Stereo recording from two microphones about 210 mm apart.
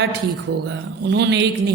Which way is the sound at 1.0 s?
55° right (ahead or behind).